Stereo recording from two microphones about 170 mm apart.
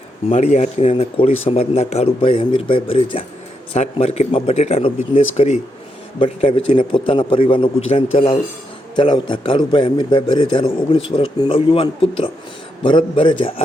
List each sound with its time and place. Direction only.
0.3 s a man's voice: 45° left (ahead or behind)